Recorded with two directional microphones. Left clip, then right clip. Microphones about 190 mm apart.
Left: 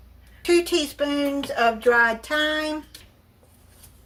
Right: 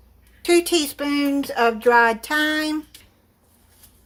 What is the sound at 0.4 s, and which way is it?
Speech, 55° right (ahead or behind).